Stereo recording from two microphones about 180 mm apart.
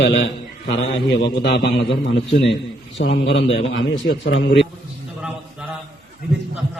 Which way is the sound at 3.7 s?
90° left.